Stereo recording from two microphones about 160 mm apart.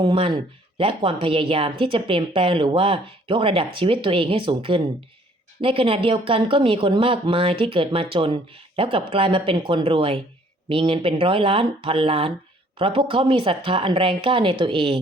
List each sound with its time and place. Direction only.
0.0 s speech: 35° right (ahead or behind)